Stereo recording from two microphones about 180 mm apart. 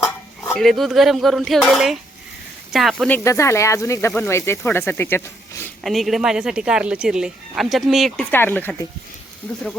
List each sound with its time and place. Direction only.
0.0 s cutlery: 10° left (ahead or behind)
2.7 s speech: centre (ahead or behind)
3.2 s speech: 15° left (ahead or behind)
5.8 s speech: centre (ahead or behind)